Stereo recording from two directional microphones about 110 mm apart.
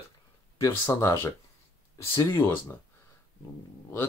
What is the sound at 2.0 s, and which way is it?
Speech, 50° left (ahead or behind).